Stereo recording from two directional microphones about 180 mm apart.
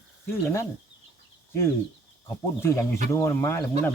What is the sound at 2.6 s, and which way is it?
Speech, 15° left (ahead or behind).